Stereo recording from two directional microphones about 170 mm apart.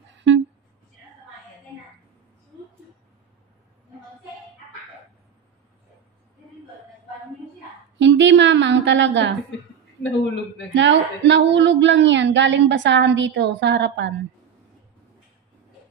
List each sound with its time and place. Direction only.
0.1 s a sound: 90° right
8.0 s a woman's voice: 90° right
10.7 s a woman's voice: 90° right